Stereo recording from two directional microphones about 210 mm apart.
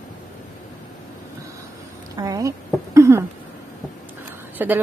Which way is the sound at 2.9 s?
15° right (ahead or behind).